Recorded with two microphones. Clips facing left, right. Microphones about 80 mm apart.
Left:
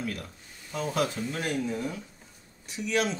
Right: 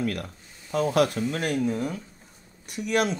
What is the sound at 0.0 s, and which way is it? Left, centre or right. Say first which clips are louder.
Speech: right 6 dB; right.